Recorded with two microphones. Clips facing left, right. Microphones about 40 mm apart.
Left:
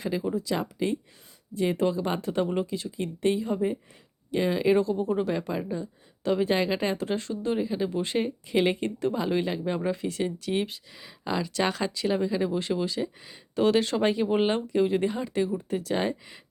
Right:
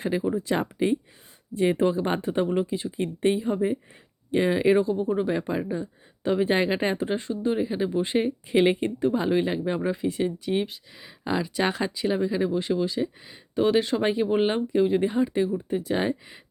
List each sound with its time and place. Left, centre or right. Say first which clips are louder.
0.0 s speech: right 3 dB; right
0.3 s speech: right 3 dB; right; by 4.9 s centre
4.9 s speech: right 2 dB; centre
5.2 s speech: right 2 dB; centre
7.1 s speech: right 2 dB; centre